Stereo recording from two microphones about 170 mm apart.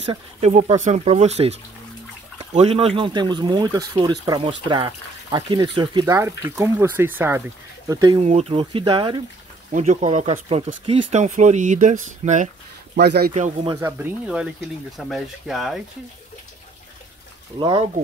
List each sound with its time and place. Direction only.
0.0 s speech: 35° right (ahead or behind); by 7.4 s 10° right (ahead or behind)
7.9 s speech: 20° right (ahead or behind)
8.2 s speech: 40° right (ahead or behind)
9.7 s speech: 45° right (ahead or behind)
12.9 s speech: 75° right (ahead or behind)
13.3 s speech: 40° right (ahead or behind)
13.7 s speech: 15° right (ahead or behind)
17.6 s speech: 30° right (ahead or behind)